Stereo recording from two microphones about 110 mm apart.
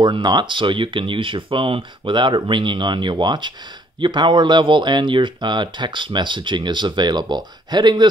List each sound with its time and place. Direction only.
0.0 s speech: 40° right (ahead or behind)